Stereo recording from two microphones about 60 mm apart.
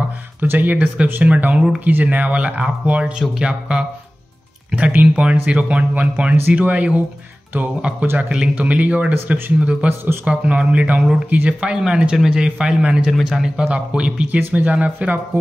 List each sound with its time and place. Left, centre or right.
0.4 s speech: right
1.9 s a man's voice: right
8.3 s speech: centre
11.6 s a man's voice: centre
13.7 s speech: centre